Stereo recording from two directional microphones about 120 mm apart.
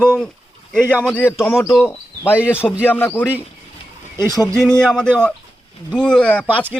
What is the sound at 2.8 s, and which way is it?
Speech, 15° left (ahead or behind).